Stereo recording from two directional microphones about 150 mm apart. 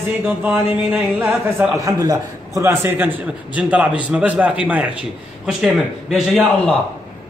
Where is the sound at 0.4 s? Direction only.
10° right (ahead or behind).